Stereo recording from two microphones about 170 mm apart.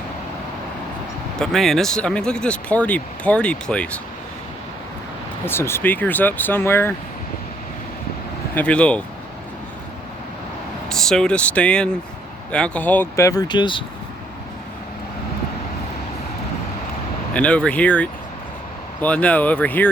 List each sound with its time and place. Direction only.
1.4 s speech: centre (ahead or behind)
5.5 s speech: 15° left (ahead or behind)
8.5 s speech: 5° left (ahead or behind)
10.8 s speech: 5° left (ahead or behind); by 13.8 s 25° left (ahead or behind)
17.3 s speech: 5° left (ahead or behind)